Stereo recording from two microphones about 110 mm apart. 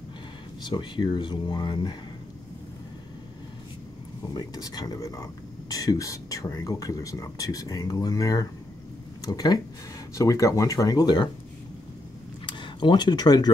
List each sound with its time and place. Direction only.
0.7 s speech: 45° left (ahead or behind)
4.3 s speech: 35° left (ahead or behind)
12.4 s speech: 45° left (ahead or behind)